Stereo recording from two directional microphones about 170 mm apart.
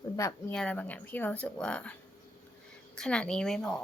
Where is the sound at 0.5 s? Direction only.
5° left (ahead or behind).